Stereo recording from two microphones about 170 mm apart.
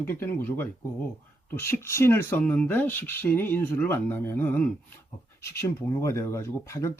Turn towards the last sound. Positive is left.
turn(degrees=15)  # may be behind; listen again after turning